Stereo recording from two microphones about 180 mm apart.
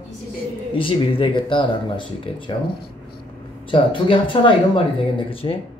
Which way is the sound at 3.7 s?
30° left (ahead or behind).